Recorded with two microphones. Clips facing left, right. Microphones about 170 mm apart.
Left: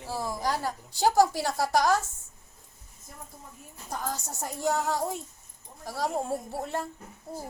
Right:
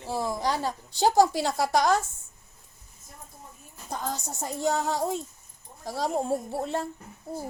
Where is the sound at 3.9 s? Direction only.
20° right (ahead or behind).